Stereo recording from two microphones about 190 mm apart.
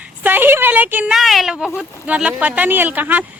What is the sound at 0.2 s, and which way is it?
Speech, 10° right (ahead or behind).